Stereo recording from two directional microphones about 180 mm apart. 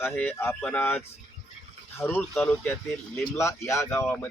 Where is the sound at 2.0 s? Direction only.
15° left (ahead or behind).